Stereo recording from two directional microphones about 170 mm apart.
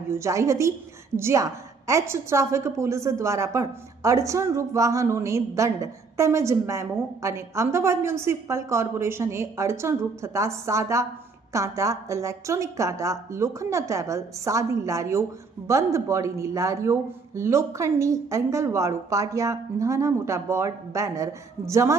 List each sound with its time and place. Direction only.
0.1 s a woman's voice: 15° right (ahead or behind)